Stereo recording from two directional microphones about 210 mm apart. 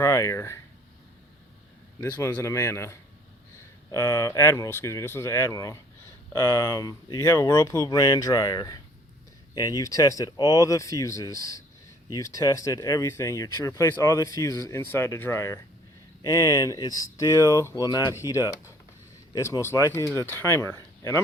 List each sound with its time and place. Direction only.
0.0 s speech: 15° left (ahead or behind)
2.0 s speech: 10° left (ahead or behind)